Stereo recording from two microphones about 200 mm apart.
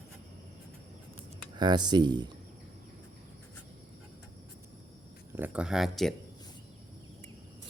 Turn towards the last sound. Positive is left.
turn(degrees=0)  # may be behind; listen again after turning